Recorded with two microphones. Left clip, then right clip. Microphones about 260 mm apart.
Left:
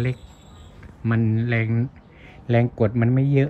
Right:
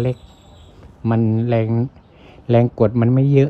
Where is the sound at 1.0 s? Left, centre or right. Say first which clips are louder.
Right 5 dB; centre.